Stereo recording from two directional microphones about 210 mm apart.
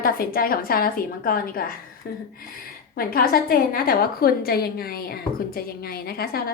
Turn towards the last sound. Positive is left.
turn(degrees=45)  # may be behind; listen again after turning